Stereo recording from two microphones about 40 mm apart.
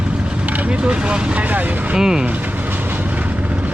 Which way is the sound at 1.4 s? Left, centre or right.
Right.